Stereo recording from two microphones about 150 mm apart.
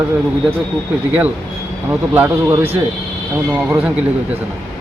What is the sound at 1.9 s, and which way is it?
Speech, 15° right (ahead or behind).